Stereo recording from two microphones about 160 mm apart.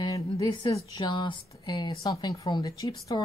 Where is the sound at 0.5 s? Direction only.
25° left (ahead or behind).